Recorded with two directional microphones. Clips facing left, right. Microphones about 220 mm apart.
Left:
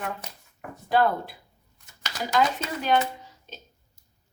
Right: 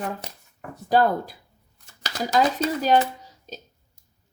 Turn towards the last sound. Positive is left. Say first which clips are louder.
# right 2 dB
turn(degrees=-40)  # may be behind; listen again after turning